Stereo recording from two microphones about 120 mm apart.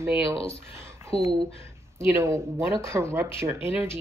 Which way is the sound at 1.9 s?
25° right (ahead or behind).